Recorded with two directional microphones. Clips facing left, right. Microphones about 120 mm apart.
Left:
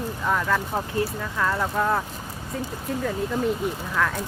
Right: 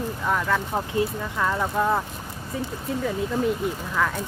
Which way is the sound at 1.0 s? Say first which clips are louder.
Right 1 dB; 15° right (ahead or behind).